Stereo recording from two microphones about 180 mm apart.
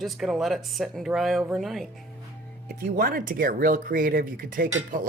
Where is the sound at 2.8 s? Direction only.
55° right (ahead or behind).